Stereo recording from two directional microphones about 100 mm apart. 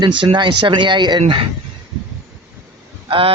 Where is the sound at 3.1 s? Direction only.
65° right (ahead or behind).